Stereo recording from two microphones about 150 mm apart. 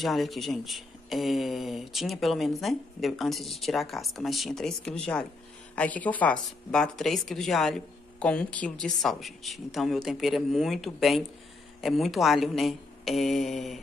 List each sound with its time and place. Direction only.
0.0 s speech: centre (ahead or behind)